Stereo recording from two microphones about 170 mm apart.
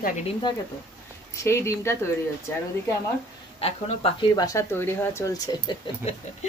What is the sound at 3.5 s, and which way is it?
Speech, 35° left (ahead or behind).